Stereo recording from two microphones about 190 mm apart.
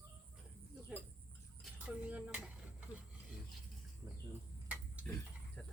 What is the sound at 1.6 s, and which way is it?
Cutlery, 5° right (ahead or behind).